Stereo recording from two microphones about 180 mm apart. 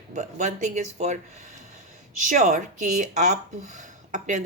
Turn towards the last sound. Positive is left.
turn(degrees=-45)  # may be behind; listen again after turning